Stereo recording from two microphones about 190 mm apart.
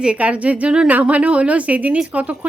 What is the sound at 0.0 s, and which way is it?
A woman's voice, 5° right (ahead or behind).